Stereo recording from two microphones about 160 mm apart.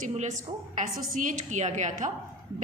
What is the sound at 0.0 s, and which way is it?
A woman's voice, 45° right (ahead or behind).